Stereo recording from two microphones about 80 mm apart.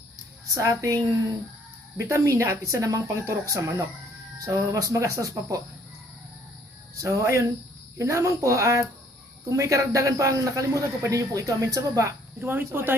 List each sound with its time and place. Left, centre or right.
0.5 s a man's voice: right
2.0 s a man's voice: right
7.0 s a man's voice: right
12.4 s speech: right